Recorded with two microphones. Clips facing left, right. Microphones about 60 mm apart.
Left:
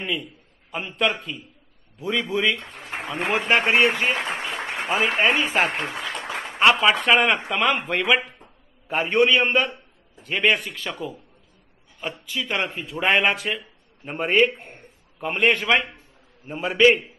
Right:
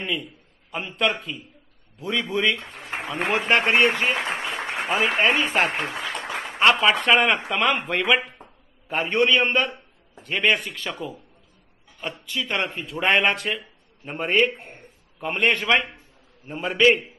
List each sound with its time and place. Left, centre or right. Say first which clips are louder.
0.0 s a man's voice: even; centre